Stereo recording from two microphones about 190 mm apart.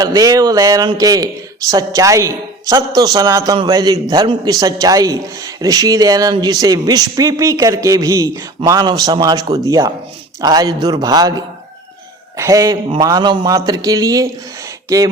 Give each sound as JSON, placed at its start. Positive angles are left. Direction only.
{"t": 0.0, "sound": "a man's voice", "side_deg": -20}